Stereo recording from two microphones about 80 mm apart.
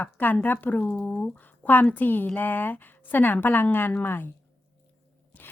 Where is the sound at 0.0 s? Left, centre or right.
Left.